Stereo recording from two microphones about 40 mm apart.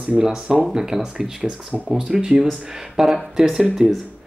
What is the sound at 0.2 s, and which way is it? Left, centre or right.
Speech, centre.